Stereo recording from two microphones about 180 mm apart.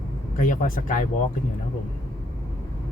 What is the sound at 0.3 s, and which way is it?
Speech, 45° left (ahead or behind).